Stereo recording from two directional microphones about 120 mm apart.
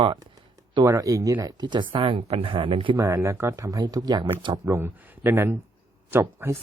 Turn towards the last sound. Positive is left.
turn(degrees=-20)  # may be behind; listen again after turning